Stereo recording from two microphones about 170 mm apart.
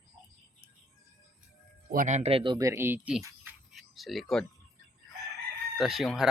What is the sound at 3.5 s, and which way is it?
Cricket, 10° right (ahead or behind).